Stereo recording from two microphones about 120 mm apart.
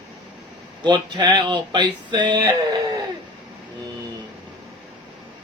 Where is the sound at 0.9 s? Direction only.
40° right (ahead or behind).